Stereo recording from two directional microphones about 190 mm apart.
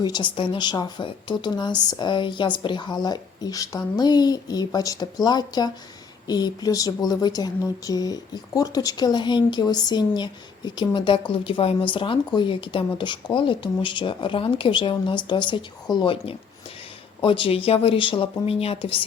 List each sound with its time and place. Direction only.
0.0 s speech: 25° left (ahead or behind)